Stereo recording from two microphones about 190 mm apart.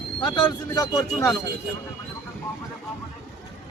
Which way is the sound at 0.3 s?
20° left (ahead or behind).